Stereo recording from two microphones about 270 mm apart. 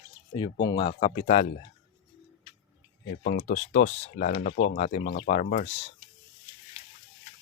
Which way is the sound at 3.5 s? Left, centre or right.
Left.